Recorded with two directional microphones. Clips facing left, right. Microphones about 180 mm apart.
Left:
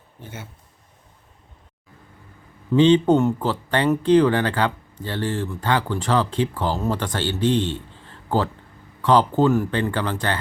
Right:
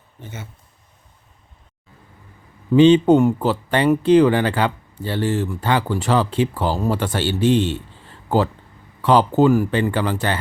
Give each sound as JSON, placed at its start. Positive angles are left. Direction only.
{"t": 0.2, "sound": "speech", "side_deg": 10}
{"t": 2.7, "sound": "speech", "side_deg": -15}